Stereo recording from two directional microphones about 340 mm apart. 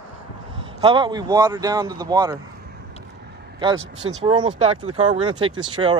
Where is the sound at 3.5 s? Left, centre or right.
Centre.